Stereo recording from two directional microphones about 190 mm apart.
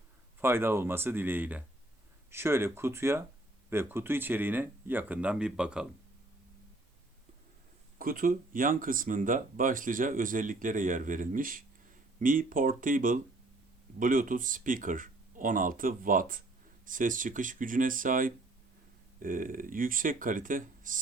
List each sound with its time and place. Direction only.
0.4 s speech: 10° right (ahead or behind)
7.9 s speech: 45° right (ahead or behind)